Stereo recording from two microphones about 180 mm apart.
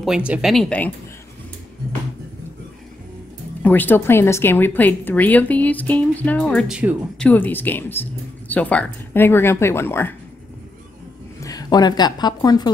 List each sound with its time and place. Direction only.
0.0 s speech: 5° right (ahead or behind)
3.6 s speech: 10° left (ahead or behind)
11.4 s speech: 20° left (ahead or behind)